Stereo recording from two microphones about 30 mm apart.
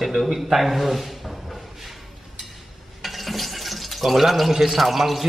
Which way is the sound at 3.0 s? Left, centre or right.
Centre.